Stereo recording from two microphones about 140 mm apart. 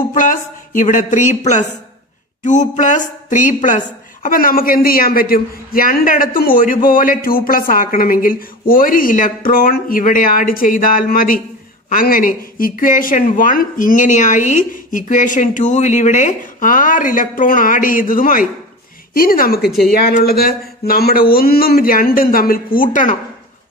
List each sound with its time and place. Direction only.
0.1 s a woman's voice: 70° left (ahead or behind)
19.1 s speech: 90° left
19.6 s speech: centre (ahead or behind)
19.9 s speech: 90° left